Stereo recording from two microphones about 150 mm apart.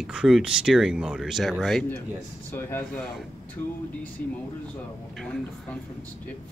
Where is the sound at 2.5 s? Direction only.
15° left (ahead or behind).